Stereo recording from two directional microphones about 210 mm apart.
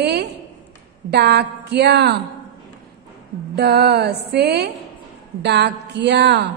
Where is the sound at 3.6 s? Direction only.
50° right (ahead or behind).